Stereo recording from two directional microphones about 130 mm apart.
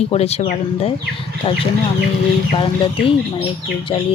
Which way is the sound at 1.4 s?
40° left (ahead or behind).